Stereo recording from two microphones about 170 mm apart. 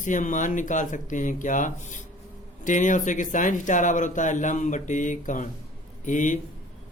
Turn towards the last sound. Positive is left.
turn(degrees=45)  # may be behind; listen again after turning